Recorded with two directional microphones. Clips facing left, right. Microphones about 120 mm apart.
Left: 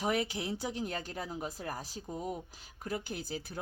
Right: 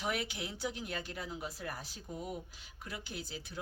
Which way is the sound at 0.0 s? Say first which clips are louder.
Left 5 dB; 40° left (ahead or behind).